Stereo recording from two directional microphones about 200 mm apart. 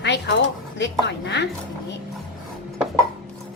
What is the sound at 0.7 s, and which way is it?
Speech, 60° left (ahead or behind).